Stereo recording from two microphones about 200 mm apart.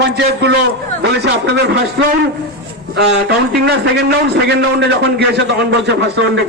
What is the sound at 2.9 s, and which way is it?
A man's voice, 55° right (ahead or behind).